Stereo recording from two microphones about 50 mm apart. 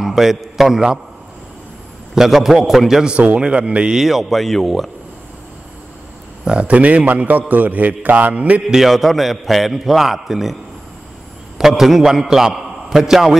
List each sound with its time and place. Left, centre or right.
0.0 s a man's voice: centre
2.1 s a man's voice: centre
3.1 s speech: right
4.0 s a man's voice: centre
6.4 s a man's voice: right
8.6 s a man's voice: centre
11.5 s a man's voice: centre